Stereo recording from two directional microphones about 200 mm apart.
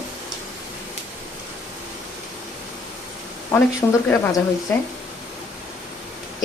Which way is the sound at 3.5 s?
15° left (ahead or behind).